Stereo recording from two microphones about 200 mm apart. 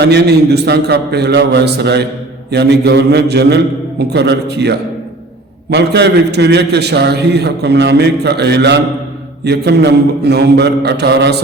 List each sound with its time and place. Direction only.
0.0 s a man's voice: 55° right (ahead or behind)